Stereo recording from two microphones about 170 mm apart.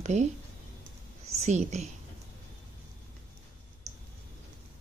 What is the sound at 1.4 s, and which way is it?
Speech, 45° right (ahead or behind).